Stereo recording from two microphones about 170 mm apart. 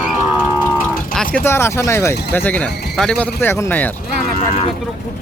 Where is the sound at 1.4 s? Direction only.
15° left (ahead or behind).